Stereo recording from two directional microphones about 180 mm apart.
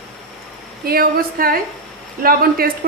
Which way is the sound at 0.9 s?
55° right (ahead or behind).